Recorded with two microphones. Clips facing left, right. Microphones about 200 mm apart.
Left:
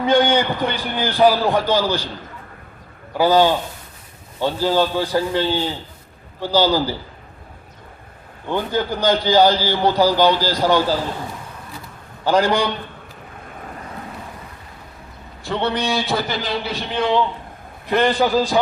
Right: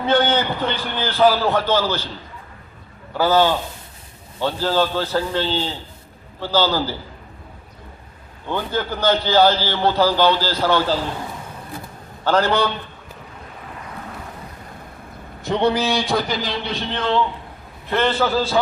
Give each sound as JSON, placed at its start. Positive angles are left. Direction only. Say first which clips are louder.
{"t": 0.0, "sound": "a man's voice", "louder": "left 2 dB", "side_deg": 15}
{"t": 3.2, "sound": "a man's voice", "louder": "left 2 dB", "side_deg": 15}
{"t": 8.4, "sound": "a man's voice", "louder": "left 2 dB", "side_deg": 15}
{"t": 12.2, "sound": "a man's voice", "louder": "left 1 dB", "side_deg": 15}
{"t": 15.4, "sound": "a man's voice", "louder": "right 3 dB", "side_deg": -15}